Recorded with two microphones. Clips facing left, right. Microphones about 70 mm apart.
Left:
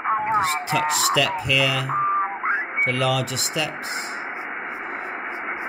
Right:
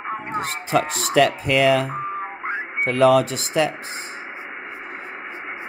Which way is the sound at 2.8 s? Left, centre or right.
Right.